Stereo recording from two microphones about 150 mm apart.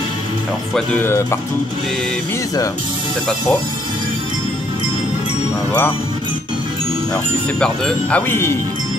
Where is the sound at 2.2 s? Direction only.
20° left (ahead or behind).